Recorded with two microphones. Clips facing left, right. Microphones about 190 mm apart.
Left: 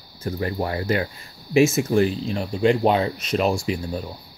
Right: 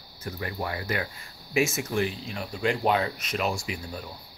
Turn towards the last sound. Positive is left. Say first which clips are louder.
# left 9 dB
turn(degrees=30)  # may be behind; listen again after turning